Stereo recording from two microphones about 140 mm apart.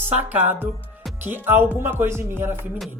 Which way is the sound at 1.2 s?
15° right (ahead or behind).